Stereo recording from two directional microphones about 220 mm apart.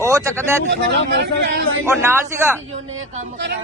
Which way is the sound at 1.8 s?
10° right (ahead or behind).